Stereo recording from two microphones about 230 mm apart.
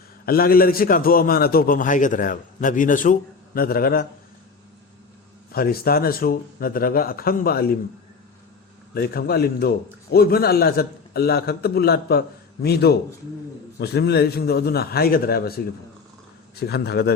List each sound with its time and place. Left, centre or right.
0.3 s a man's voice: left
5.5 s a man's voice: left
9.0 s a man's voice: left